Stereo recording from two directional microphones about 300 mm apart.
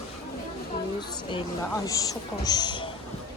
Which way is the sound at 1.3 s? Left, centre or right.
Centre.